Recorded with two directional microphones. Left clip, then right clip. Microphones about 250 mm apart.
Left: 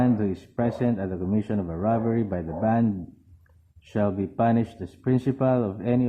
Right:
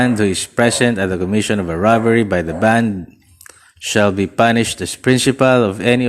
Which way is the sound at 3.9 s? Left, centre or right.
Right.